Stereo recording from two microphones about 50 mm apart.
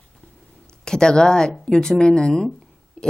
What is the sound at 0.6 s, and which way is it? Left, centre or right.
Speech, centre.